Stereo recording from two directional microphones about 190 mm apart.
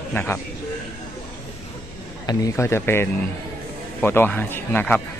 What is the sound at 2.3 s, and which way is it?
Speech, 15° left (ahead or behind).